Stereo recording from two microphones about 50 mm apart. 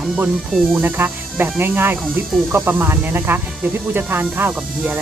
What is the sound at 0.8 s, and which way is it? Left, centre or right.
Speech, right.